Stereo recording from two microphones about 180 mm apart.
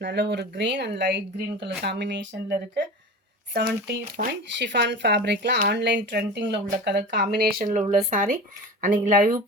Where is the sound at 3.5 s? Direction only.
65° right (ahead or behind).